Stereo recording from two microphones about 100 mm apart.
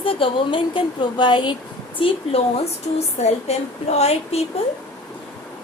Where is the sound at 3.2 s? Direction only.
90° left.